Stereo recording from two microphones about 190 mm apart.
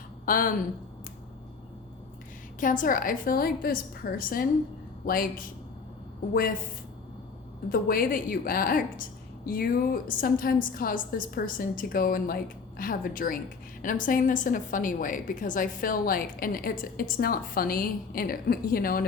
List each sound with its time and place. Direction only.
0.3 s a woman's voice: 45° left (ahead or behind)
2.6 s a woman's voice: 45° left (ahead or behind)
7.7 s a woman's voice: 50° left (ahead or behind)